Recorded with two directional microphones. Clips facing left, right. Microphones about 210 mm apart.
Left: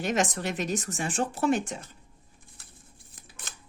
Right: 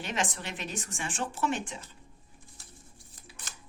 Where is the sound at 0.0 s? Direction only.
45° left (ahead or behind).